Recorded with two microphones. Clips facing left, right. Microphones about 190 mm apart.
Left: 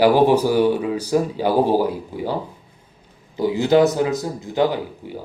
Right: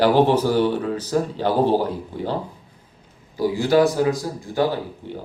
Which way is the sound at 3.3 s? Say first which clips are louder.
Left 2 dB; 20° left (ahead or behind).